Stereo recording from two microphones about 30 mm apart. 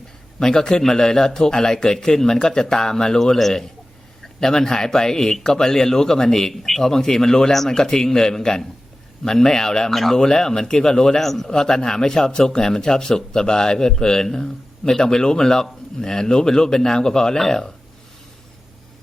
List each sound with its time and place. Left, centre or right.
0.3 s a man's voice: left
4.4 s a man's voice: centre
6.5 s speech: centre
7.5 s speech: centre
7.8 s a man's voice: centre
9.9 s speech: centre
10.2 s a man's voice: left
11.3 s speech: centre
11.5 s a man's voice: left